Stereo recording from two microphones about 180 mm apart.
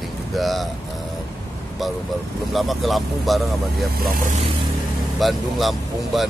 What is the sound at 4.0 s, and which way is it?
Speech, 55° right (ahead or behind).